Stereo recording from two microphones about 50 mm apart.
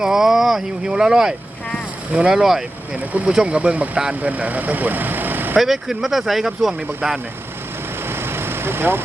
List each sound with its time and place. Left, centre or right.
0.0 s speech: centre
2.4 s speech: centre
2.9 s speech: right
5.5 s speech: centre
8.0 s vehicle: right